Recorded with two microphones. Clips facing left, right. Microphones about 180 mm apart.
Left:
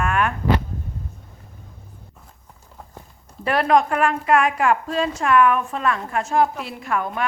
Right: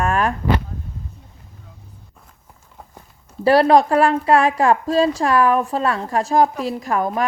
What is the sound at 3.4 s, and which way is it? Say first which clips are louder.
Speech: right 5 dB; 30° right (ahead or behind).